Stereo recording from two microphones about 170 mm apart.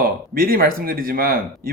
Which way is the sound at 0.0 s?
60° right (ahead or behind).